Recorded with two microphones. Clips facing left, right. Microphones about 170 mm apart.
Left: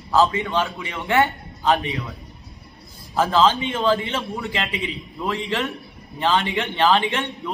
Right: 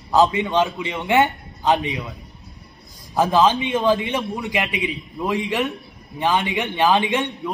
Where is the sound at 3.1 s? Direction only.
15° right (ahead or behind).